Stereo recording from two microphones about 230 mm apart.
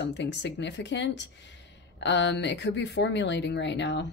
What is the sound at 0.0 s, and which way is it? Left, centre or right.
A woman's voice, left.